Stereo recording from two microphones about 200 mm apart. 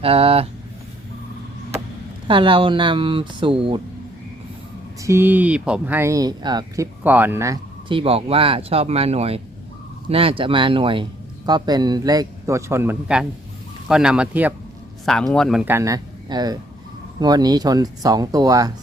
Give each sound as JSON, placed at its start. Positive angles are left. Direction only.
{"t": 0.0, "sound": "speech", "side_deg": -30}
{"t": 2.2, "sound": "speech", "side_deg": -25}
{"t": 5.0, "sound": "speech", "side_deg": -10}
{"t": 7.0, "sound": "speech", "side_deg": -10}
{"t": 15.6, "sound": "speech", "side_deg": -15}